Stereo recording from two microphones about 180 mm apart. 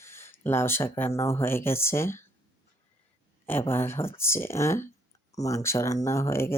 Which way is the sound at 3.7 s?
15° left (ahead or behind).